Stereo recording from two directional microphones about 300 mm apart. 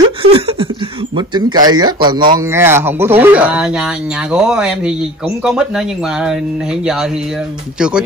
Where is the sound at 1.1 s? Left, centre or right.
Centre.